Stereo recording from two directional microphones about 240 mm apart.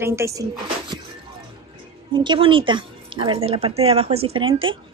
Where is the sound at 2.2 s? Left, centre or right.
Centre.